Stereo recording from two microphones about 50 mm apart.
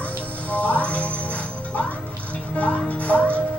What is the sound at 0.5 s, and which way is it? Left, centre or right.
Music, left.